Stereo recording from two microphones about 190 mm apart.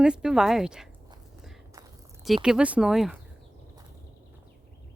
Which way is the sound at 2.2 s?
Centre (ahead or behind).